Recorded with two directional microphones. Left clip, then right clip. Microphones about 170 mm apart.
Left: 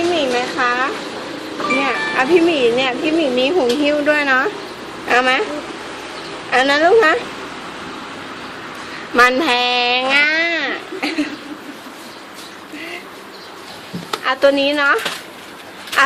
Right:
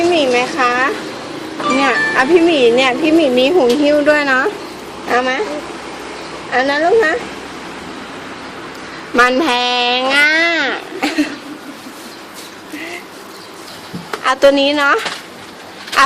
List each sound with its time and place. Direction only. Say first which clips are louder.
0.1 s a sound: right 4 dB; 15° right (ahead or behind)
1.8 s music: right 7 dB; 25° right (ahead or behind)
2.3 s speech: right 3 dB; 15° right (ahead or behind)
5.0 s a woman's voice: left 1 dB; 5° left (ahead or behind)
6.5 s a woman's voice: left 1 dB; 5° left (ahead or behind)
9.1 s speech: right 1 dB; 5° right (ahead or behind)
14.3 s speech: right 4 dB; 10° right (ahead or behind)